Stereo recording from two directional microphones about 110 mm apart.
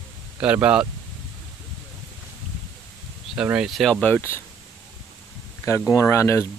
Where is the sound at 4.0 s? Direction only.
20° left (ahead or behind).